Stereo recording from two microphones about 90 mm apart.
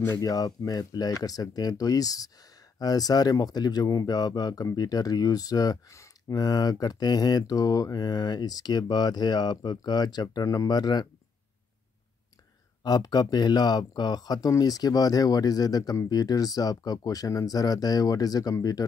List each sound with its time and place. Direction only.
0.2 s speech: 45° left (ahead or behind)
12.8 s speech: 45° left (ahead or behind)